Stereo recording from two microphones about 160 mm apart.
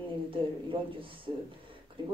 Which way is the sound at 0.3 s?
35° right (ahead or behind).